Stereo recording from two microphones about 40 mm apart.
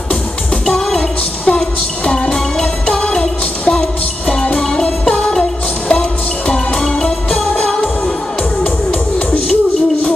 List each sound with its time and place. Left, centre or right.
0.7 s music: centre
2.9 s music: left
5.0 s music: left